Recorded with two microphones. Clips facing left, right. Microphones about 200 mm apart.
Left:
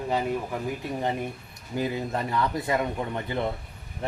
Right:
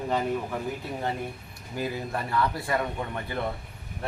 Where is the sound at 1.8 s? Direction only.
20° left (ahead or behind).